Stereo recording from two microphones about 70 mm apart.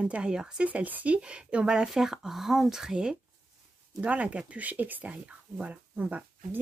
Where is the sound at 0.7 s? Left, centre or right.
Right.